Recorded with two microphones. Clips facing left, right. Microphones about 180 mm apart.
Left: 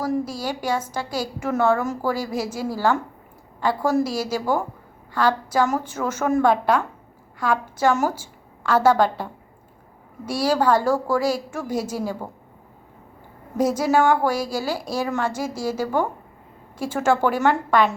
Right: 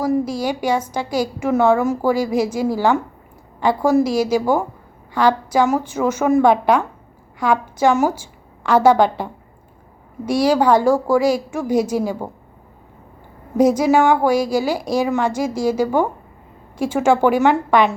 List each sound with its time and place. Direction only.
0.0 s a woman's voice: 15° right (ahead or behind)
13.6 s a woman's voice: 15° right (ahead or behind)